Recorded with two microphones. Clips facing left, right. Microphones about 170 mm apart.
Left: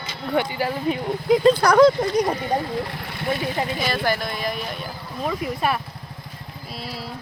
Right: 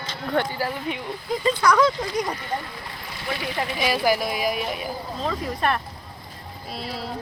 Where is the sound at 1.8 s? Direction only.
50° left (ahead or behind).